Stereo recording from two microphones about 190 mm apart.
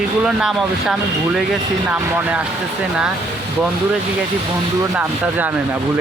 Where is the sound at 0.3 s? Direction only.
Centre (ahead or behind).